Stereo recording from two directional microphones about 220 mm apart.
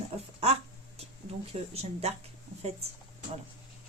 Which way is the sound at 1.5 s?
30° right (ahead or behind).